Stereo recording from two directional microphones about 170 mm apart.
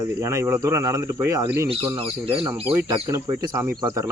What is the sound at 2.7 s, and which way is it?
Speech, 15° right (ahead or behind).